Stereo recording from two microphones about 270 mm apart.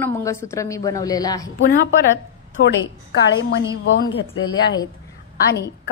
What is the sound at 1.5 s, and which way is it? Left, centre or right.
A woman's voice, left.